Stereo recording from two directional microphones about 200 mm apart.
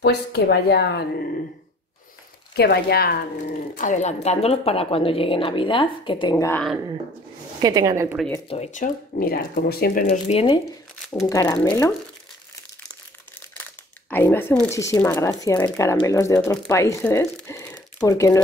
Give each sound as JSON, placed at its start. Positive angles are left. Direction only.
{"t": 0.0, "sound": "a woman's voice", "side_deg": 55}
{"t": 2.5, "sound": "speech", "side_deg": 55}
{"t": 3.7, "sound": "speech", "side_deg": 40}
{"t": 6.3, "sound": "speech", "side_deg": 10}
{"t": 7.6, "sound": "a woman's voice", "side_deg": -20}
{"t": 8.5, "sound": "speech", "side_deg": 35}
{"t": 10.0, "sound": "speech", "side_deg": 30}
{"t": 11.2, "sound": "speech", "side_deg": 15}
{"t": 14.1, "sound": "speech", "side_deg": 10}